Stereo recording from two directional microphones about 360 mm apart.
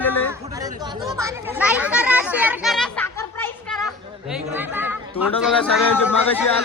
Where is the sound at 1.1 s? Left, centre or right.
Centre.